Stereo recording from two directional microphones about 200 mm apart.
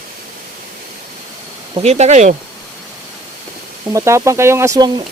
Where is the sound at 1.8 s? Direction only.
35° right (ahead or behind).